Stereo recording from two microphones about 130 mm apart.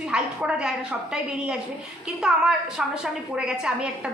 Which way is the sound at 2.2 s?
5° right (ahead or behind).